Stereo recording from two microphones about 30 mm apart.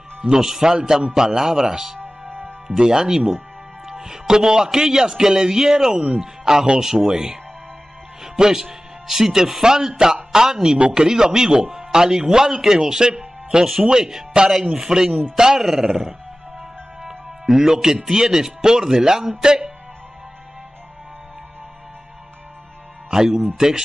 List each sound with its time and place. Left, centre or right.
0.2 s a man's voice: right
5.9 s speech: right
6.4 s a man's voice: right
15.6 s music: centre
18.0 s a man's voice: centre
23.0 s speech: right